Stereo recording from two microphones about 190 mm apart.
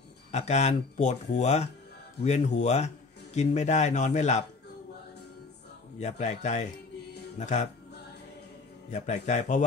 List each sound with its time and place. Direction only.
0.3 s speech: 35° left (ahead or behind)
5.9 s speech: 35° left (ahead or behind)
8.9 s speech: 40° left (ahead or behind)